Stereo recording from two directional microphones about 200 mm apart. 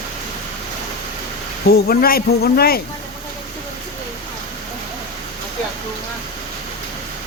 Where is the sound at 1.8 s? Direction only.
50° left (ahead or behind).